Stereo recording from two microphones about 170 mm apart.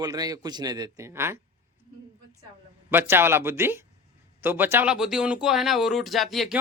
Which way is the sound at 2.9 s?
15° right (ahead or behind).